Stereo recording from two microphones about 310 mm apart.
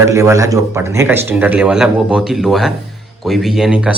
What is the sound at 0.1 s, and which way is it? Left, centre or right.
Speech, centre.